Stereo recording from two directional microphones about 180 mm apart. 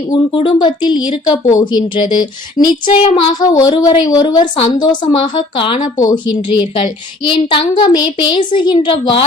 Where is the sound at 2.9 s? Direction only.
25° left (ahead or behind).